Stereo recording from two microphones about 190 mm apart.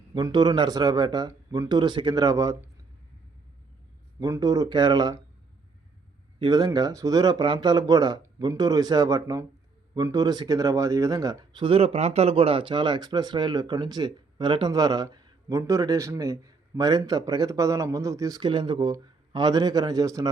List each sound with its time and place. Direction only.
0.1 s speech: 20° right (ahead or behind)
4.2 s speech: 20° right (ahead or behind)
6.4 s speech: 20° right (ahead or behind)